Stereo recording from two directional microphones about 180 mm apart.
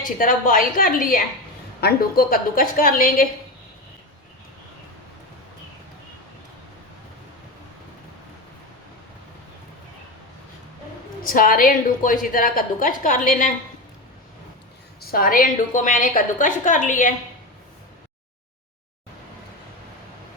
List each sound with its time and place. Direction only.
0.2 s a woman's voice: 50° left (ahead or behind)
11.2 s a woman's voice: 50° left (ahead or behind)
15.0 s a woman's voice: 55° left (ahead or behind)